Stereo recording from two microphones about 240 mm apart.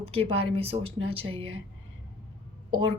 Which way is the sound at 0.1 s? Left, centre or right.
Right.